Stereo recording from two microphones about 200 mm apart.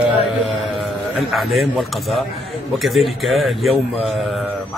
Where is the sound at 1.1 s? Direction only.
Centre (ahead or behind).